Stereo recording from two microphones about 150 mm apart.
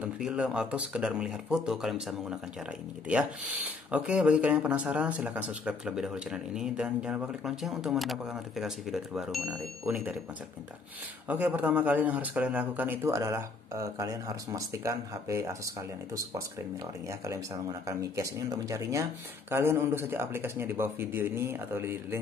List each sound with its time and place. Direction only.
0.0 s speech: 5° right (ahead or behind)
11.2 s speech: 10° right (ahead or behind)
17.8 s speech: 20° right (ahead or behind)